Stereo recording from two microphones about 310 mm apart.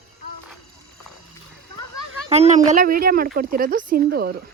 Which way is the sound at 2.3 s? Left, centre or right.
Right.